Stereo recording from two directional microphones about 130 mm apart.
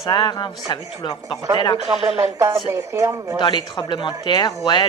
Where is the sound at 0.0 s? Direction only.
35° left (ahead or behind).